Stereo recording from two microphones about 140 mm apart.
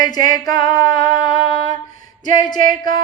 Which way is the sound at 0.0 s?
30° left (ahead or behind).